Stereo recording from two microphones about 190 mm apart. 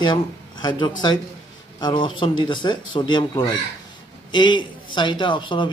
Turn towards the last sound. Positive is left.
turn(degrees=25)  # may be behind; listen again after turning